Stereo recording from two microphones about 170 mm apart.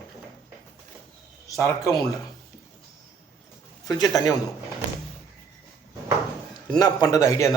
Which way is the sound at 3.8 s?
25° left (ahead or behind).